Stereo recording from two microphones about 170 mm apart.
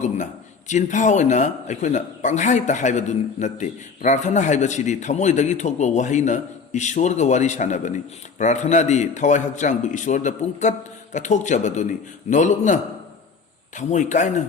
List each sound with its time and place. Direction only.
0.7 s speech: 45° left (ahead or behind)